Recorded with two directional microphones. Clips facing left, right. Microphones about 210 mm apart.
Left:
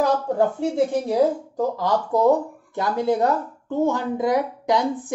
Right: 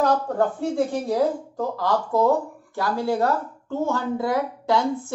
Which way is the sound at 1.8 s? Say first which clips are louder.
Right 1 dB; 20° left (ahead or behind).